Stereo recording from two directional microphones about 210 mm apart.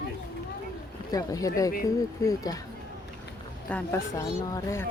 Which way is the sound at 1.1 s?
15° left (ahead or behind).